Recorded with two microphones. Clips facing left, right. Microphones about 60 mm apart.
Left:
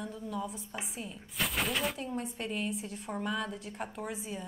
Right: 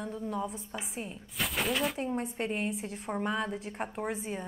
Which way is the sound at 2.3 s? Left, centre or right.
Right.